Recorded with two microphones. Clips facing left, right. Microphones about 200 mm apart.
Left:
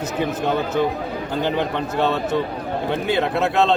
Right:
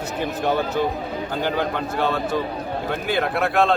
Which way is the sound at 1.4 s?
20° left (ahead or behind).